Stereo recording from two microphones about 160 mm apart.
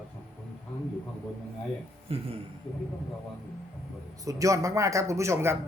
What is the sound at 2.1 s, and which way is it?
Speech, 35° right (ahead or behind).